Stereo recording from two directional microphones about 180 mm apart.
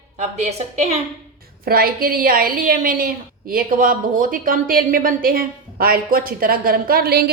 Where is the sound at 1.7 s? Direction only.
55° right (ahead or behind).